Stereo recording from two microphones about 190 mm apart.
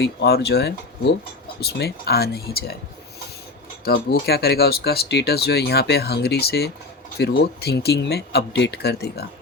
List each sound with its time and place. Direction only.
0.0 s speech: 55° left (ahead or behind)
3.8 s speech: 55° left (ahead or behind)